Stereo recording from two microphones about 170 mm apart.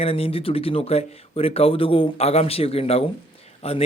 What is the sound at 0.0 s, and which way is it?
Speech, 35° left (ahead or behind).